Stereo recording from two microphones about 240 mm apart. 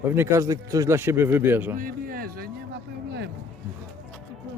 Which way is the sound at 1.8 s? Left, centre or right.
Right.